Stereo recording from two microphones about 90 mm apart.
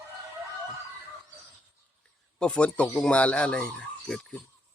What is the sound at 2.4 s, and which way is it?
Speech, 10° left (ahead or behind).